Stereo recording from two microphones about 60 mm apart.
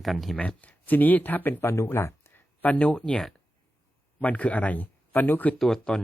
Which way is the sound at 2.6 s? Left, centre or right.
Left.